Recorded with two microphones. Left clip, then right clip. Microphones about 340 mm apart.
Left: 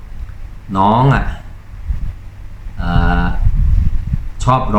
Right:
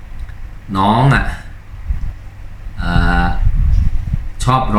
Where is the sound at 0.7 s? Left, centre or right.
Centre.